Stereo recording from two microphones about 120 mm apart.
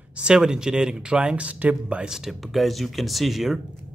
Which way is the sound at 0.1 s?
10° right (ahead or behind).